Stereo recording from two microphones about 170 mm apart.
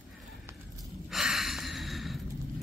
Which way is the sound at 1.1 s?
Centre (ahead or behind).